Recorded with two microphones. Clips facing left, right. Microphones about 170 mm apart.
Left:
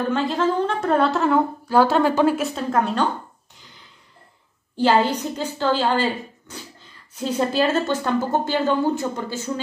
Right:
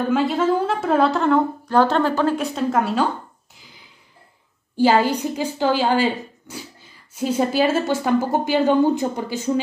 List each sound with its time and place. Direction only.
0.1 s a woman's voice: 5° right (ahead or behind)
3.5 s a sound: 5° right (ahead or behind)
4.7 s speech: 10° right (ahead or behind)